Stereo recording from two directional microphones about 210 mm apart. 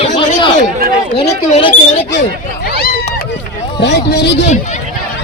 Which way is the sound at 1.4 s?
30° left (ahead or behind).